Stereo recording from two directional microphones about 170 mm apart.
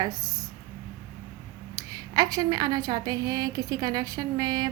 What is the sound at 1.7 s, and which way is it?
A woman's voice, 20° right (ahead or behind).